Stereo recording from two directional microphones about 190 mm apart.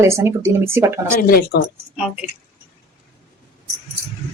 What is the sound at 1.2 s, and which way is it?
Speech, 50° left (ahead or behind).